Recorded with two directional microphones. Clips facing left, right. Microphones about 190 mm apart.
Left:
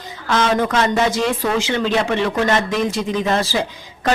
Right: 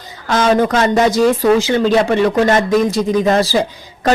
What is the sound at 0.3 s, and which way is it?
Speech, 45° right (ahead or behind).